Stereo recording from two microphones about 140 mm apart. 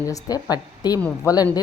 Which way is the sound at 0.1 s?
25° left (ahead or behind).